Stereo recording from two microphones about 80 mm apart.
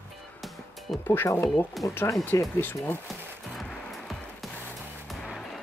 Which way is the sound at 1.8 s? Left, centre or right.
Centre.